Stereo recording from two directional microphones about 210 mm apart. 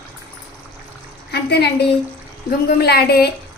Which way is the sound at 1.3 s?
50° left (ahead or behind).